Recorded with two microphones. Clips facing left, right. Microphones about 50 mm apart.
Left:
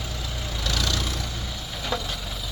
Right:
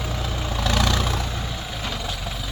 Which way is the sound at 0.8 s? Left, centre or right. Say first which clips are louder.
Right 5 dB; right.